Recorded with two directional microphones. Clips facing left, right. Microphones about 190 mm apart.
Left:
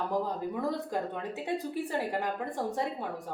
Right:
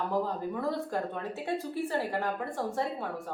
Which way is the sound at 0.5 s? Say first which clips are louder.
Even; 15° left (ahead or behind).